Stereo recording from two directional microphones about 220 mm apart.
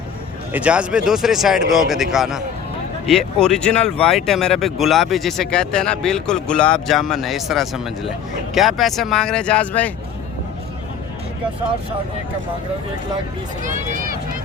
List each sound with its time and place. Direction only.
0.5 s speech: 5° right (ahead or behind)
13.7 s speech: 40° right (ahead or behind)